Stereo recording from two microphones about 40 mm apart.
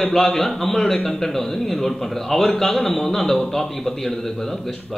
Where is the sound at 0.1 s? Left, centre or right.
Centre.